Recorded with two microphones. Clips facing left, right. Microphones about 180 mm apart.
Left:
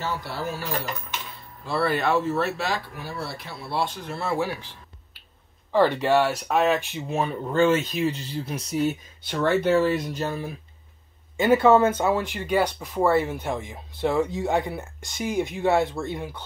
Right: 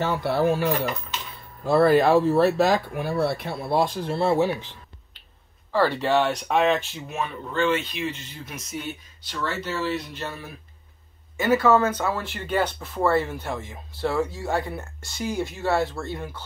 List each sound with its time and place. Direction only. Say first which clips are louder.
0.0 s speech: right 8 dB; 60° right (ahead or behind)
1.6 s speech: right 7 dB; 45° right (ahead or behind); by 4.7 s 20° right (ahead or behind)
5.7 s speech: left 2 dB; 15° left (ahead or behind)
6.8 s speech: left 3 dB; 15° left (ahead or behind)
7.1 s speech: left 5 dB; 40° left (ahead or behind)
9.2 s speech: left 8 dB; 55° left (ahead or behind)
11.3 s speech: left 2 dB; 25° left (ahead or behind)